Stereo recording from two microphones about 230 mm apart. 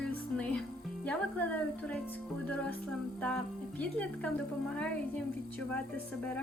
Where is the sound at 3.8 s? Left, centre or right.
Centre.